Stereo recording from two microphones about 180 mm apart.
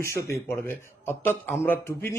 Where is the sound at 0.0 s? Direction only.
15° left (ahead or behind).